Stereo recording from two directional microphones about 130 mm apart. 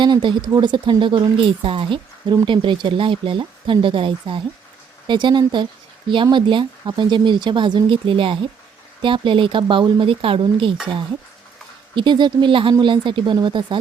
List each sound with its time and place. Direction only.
0.0 s speech: 35° right (ahead or behind)
11.9 s speech: 35° right (ahead or behind)